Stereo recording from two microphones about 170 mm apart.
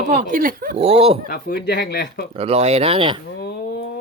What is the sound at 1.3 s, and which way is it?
Speech, 75° left (ahead or behind).